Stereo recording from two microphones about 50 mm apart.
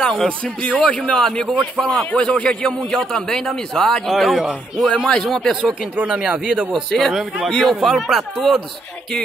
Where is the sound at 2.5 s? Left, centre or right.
Centre.